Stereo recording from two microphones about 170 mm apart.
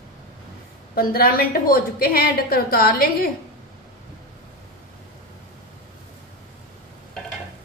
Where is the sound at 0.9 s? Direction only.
60° left (ahead or behind).